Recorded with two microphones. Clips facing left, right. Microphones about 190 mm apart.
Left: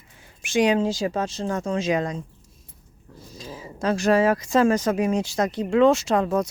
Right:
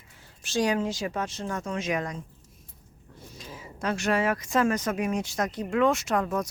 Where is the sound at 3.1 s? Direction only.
40° left (ahead or behind).